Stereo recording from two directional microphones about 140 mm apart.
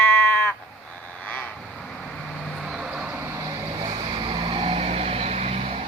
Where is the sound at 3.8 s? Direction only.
35° right (ahead or behind).